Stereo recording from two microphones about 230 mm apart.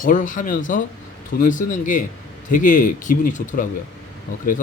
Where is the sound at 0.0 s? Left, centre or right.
Left.